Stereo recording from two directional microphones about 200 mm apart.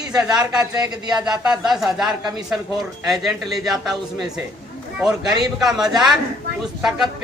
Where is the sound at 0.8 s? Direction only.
5° right (ahead or behind).